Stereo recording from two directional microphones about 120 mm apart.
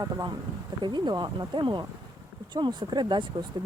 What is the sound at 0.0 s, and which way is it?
Speech, 35° right (ahead or behind).